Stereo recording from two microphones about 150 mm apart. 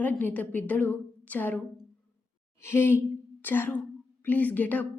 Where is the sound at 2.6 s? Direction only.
15° left (ahead or behind).